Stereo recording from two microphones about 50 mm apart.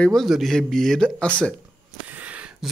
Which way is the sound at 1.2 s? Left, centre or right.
Left.